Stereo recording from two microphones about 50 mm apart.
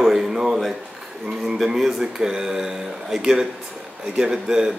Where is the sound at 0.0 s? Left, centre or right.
Centre.